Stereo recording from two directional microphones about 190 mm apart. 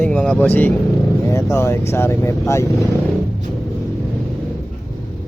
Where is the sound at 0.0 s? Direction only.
5° left (ahead or behind).